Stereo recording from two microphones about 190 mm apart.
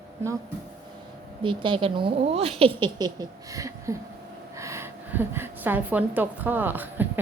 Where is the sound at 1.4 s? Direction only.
25° right (ahead or behind).